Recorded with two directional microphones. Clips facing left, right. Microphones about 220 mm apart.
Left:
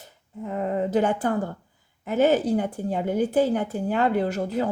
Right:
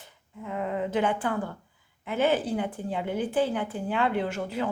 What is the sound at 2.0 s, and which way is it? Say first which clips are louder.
A woman's voice: left 5 dB; 40° left (ahead or behind).